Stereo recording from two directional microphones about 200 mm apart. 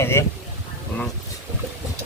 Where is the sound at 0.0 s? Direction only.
15° left (ahead or behind).